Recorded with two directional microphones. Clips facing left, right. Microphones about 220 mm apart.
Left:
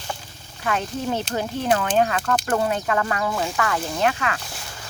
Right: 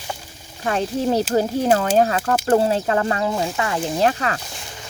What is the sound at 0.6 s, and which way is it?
Speech, 35° right (ahead or behind).